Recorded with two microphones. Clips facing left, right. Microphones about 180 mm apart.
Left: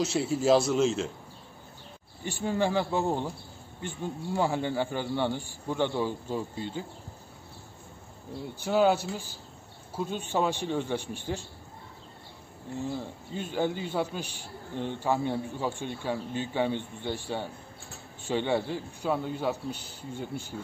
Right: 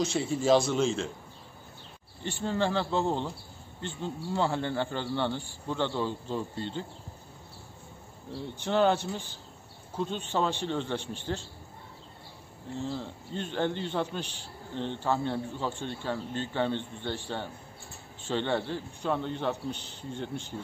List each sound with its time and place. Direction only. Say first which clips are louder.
0.0 s a man's voice: left 1 dB; 5° left (ahead or behind)
2.2 s a man's voice: left 1 dB; 10° left (ahead or behind)
8.3 s a man's voice: left 1 dB; 5° left (ahead or behind)
12.7 s a man's voice: left 1 dB; 15° left (ahead or behind)